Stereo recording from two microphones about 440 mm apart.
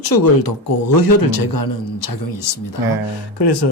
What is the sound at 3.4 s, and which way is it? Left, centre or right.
Speech, left.